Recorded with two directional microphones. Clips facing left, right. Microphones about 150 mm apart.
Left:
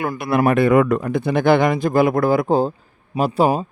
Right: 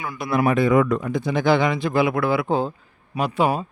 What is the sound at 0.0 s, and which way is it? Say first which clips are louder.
A man's voice: left 4 dB; 60° left (ahead or behind).